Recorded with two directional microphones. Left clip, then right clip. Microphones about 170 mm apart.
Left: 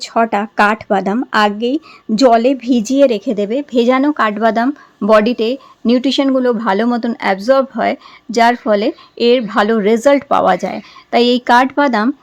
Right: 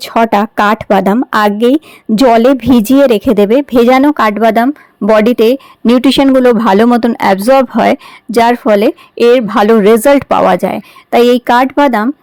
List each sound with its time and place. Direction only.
0.0 s speech: 30° right (ahead or behind)